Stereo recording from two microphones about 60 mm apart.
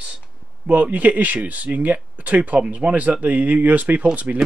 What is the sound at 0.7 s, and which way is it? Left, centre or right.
A man's voice, right.